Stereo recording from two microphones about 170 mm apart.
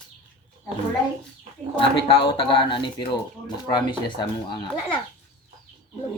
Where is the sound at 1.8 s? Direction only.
30° left (ahead or behind).